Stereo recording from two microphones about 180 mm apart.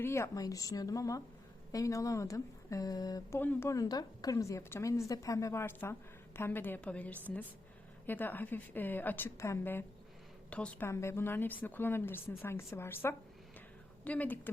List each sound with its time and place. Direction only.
0.0 s a woman's voice: 15° left (ahead or behind)